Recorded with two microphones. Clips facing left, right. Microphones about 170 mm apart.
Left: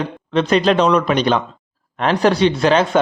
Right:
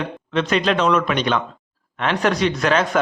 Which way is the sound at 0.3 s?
35° left (ahead or behind).